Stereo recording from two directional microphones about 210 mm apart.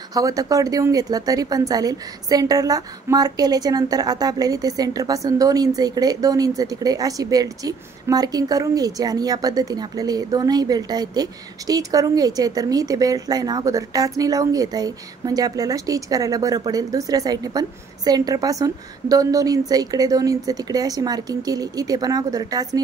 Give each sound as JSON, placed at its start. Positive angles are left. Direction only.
{"t": 0.1, "sound": "a woman's voice", "side_deg": -15}